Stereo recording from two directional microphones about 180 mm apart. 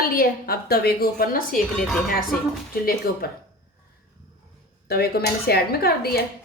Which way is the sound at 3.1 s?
55° left (ahead or behind).